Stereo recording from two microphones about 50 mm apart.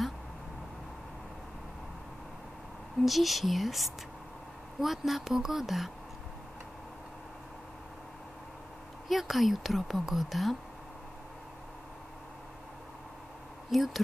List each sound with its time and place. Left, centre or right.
3.1 s a woman's voice: centre
9.1 s a woman's voice: centre
13.7 s a woman's voice: centre